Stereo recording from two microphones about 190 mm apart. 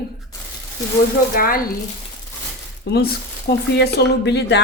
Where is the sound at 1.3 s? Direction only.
50° left (ahead or behind).